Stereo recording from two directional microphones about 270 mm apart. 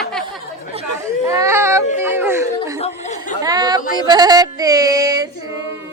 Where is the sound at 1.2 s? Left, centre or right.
Centre.